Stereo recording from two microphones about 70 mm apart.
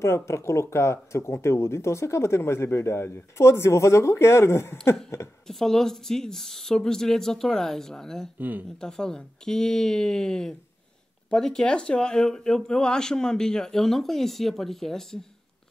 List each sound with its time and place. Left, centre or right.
0.0 s speech: left
5.5 s speech: centre
8.4 s speech: right
8.7 s speech: centre